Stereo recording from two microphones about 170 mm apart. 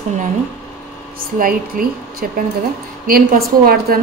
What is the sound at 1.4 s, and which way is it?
Speech, 55° right (ahead or behind).